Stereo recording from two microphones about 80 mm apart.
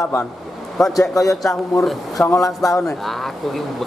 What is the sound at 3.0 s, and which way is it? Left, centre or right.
Speech, centre.